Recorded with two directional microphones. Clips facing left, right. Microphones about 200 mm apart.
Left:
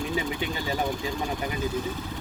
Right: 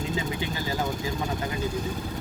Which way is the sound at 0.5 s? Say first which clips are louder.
Left 1 dB; 25° left (ahead or behind).